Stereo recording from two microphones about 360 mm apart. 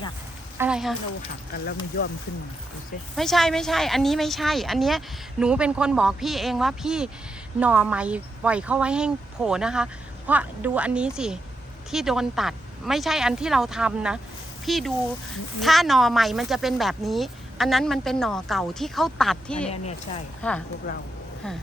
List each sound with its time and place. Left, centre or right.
0.6 s a woman's voice: centre
1.5 s speech: left
3.2 s a woman's voice: centre
20.9 s speech: left